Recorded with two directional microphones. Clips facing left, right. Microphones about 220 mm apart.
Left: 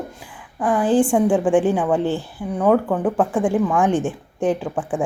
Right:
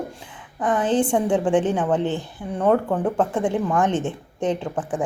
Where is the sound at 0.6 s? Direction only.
5° left (ahead or behind).